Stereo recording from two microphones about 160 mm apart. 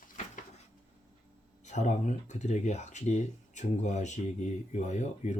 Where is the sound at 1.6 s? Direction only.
45° left (ahead or behind).